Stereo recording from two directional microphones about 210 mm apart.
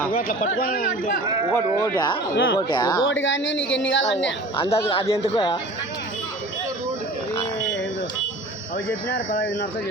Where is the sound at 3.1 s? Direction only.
65° left (ahead or behind).